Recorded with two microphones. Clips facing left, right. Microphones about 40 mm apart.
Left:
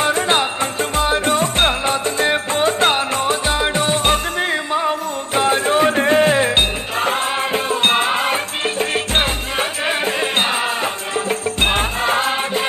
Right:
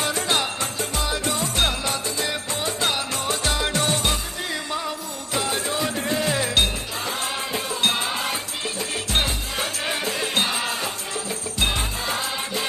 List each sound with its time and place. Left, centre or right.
0.0 s music: left
3.4 s music: left
4.0 s music: left